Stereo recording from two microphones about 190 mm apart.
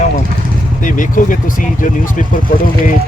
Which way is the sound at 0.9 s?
45° left (ahead or behind).